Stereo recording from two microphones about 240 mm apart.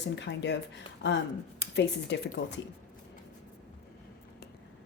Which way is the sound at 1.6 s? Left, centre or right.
Left.